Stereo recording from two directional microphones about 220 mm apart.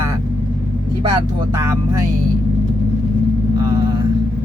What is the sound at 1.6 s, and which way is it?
Speech, 15° right (ahead or behind).